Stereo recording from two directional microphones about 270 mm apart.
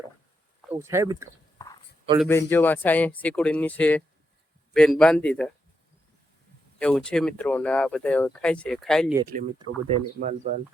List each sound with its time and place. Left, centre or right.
0.7 s speech: centre
2.1 s speech: centre
6.7 s speech: centre
9.2 s speech: right